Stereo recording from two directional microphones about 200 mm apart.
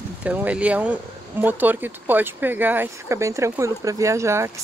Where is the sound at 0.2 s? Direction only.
5° right (ahead or behind).